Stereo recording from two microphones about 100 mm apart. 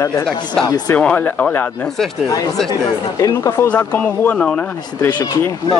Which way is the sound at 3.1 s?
35° left (ahead or behind).